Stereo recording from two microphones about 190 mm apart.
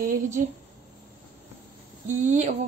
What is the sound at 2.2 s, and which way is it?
Speech, 40° right (ahead or behind).